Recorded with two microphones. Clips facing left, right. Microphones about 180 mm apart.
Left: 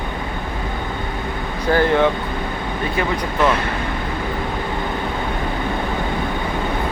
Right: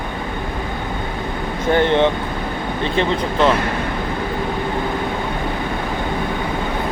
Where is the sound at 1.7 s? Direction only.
25° right (ahead or behind).